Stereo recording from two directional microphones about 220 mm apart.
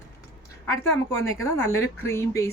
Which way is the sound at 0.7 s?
10° left (ahead or behind).